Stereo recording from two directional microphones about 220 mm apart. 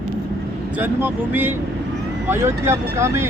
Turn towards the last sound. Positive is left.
turn(degrees=-10)  # may be behind; listen again after turning